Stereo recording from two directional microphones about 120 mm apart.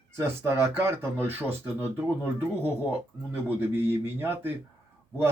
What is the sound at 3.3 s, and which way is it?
Speech, 15° right (ahead or behind).